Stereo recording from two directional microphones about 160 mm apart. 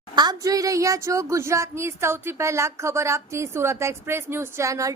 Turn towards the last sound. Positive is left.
turn(degrees=-20)  # may be behind; listen again after turning